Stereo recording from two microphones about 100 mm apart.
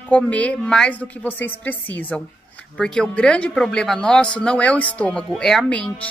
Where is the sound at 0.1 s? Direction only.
15° left (ahead or behind).